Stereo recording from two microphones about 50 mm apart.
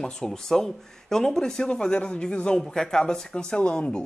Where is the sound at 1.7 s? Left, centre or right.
Left.